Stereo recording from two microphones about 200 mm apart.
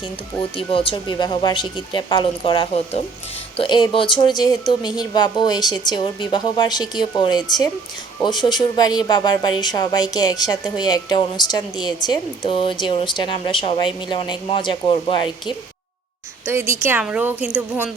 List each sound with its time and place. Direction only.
0.5 s speech: 25° left (ahead or behind)
16.5 s a woman's voice: 10° right (ahead or behind)